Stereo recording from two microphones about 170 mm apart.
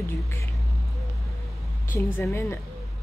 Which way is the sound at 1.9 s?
15° left (ahead or behind).